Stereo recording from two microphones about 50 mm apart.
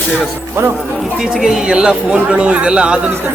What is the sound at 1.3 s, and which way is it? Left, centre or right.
Speech, centre.